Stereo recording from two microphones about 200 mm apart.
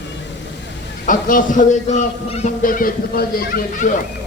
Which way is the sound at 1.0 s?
40° left (ahead or behind).